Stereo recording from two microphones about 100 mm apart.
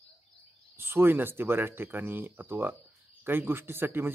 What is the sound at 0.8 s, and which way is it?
Speech, 25° right (ahead or behind).